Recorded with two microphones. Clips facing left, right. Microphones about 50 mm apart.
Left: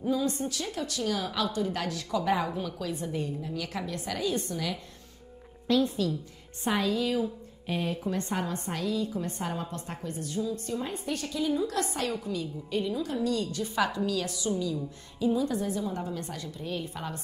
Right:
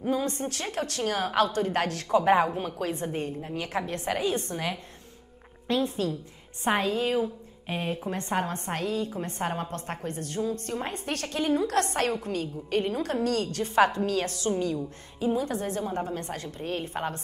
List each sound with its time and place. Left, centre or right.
0.0 s a woman's voice: right